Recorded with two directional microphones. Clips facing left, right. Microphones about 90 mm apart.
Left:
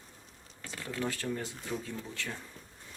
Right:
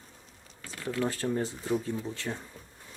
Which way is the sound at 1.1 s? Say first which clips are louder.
Right 5 dB; 30° right (ahead or behind).